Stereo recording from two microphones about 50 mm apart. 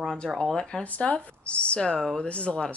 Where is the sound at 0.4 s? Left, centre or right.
Centre.